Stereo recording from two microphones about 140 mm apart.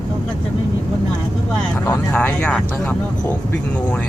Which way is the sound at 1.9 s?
15° left (ahead or behind).